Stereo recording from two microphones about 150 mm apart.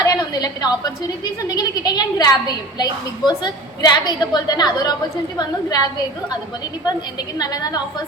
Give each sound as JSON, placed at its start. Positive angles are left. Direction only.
{"t": 0.0, "sound": "a woman's voice", "side_deg": 25}
{"t": 7.3, "sound": "a woman's voice", "side_deg": 25}